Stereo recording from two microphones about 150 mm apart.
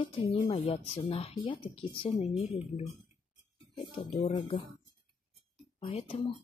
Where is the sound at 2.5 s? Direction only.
45° left (ahead or behind).